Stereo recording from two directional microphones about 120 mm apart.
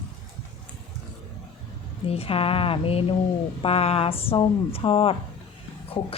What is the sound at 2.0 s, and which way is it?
A woman's voice, 55° left (ahead or behind).